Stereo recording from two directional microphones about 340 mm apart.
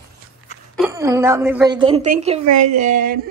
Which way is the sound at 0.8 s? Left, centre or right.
Centre.